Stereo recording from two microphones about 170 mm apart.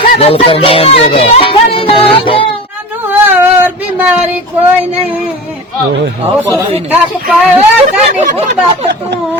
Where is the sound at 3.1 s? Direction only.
10° right (ahead or behind).